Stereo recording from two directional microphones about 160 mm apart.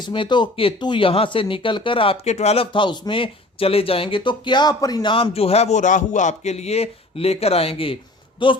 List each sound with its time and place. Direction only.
0.0 s speech: 30° left (ahead or behind)